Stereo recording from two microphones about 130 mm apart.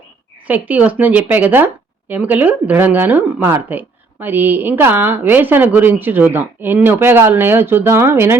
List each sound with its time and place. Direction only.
0.4 s speech: 15° right (ahead or behind)